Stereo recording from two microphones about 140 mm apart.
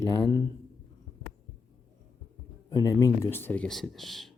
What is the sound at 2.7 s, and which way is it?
Speech, 25° left (ahead or behind).